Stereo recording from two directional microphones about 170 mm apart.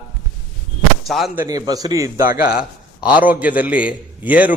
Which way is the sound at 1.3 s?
20° right (ahead or behind).